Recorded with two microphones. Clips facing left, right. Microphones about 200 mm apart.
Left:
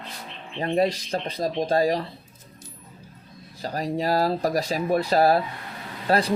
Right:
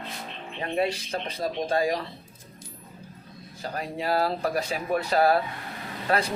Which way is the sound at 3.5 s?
35° left (ahead or behind).